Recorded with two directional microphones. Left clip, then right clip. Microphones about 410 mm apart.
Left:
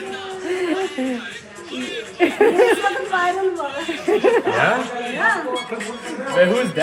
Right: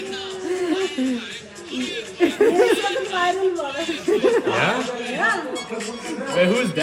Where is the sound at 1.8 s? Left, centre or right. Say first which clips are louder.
Left 1 dB; centre.